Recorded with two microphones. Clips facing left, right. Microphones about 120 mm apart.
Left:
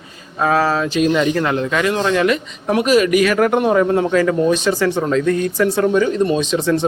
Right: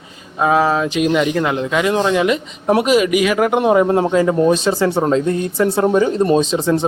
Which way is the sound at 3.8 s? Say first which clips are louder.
Right 1 dB; 30° right (ahead or behind).